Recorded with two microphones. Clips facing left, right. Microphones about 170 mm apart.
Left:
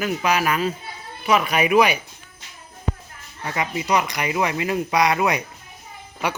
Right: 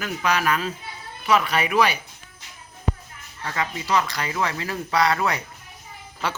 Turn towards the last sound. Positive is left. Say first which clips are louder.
# left 3 dB
turn(degrees=15)  # may be behind; listen again after turning